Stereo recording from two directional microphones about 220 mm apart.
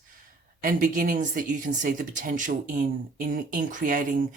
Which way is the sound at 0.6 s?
40° right (ahead or behind).